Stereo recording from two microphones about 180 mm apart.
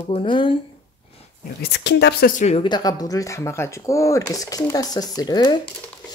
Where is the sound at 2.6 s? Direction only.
25° left (ahead or behind).